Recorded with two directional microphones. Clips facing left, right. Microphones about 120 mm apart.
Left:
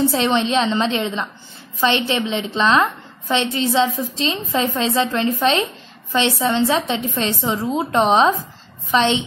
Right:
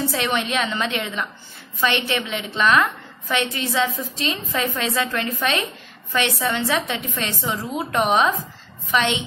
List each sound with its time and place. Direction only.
0.0 s a woman's voice: 25° left (ahead or behind)